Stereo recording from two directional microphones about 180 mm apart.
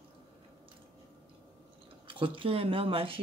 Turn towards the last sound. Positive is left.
turn(degrees=-30)  # may be behind; listen again after turning